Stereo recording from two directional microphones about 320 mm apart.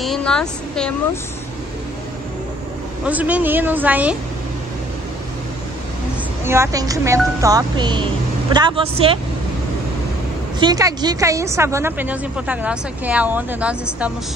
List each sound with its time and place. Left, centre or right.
0.0 s a sound: centre
3.1 s speech: centre
6.4 s speech: centre
10.6 s speech: centre